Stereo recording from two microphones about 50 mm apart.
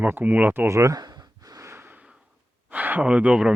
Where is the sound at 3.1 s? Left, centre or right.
Right.